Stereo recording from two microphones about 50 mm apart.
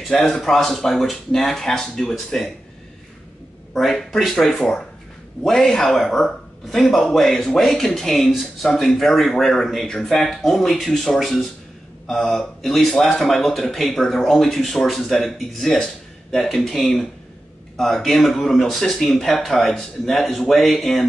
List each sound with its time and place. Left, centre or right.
0.3 s speech: centre
3.7 s a man's voice: centre